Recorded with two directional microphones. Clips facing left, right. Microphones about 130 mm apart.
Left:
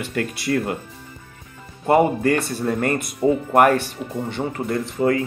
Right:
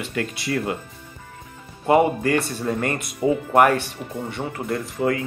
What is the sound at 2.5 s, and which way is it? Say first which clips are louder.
Speech: left 3 dB; 45° left (ahead or behind).